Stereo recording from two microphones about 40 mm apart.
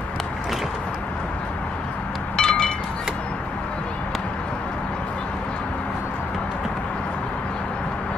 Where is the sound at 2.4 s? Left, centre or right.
Centre.